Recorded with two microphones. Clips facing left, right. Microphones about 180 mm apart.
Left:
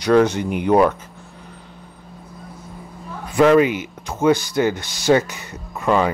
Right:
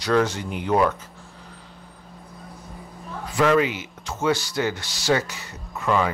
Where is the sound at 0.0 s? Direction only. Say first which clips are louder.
Left 6 dB; 20° left (ahead or behind).